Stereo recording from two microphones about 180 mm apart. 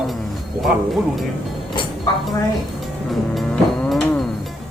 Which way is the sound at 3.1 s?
Centre (ahead or behind).